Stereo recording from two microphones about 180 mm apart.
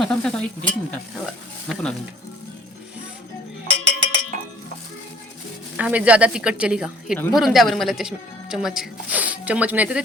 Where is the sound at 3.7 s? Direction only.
90° right.